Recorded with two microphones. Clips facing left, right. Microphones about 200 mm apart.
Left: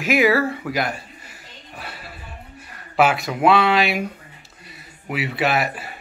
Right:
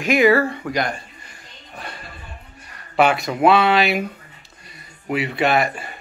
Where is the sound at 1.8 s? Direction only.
5° left (ahead or behind).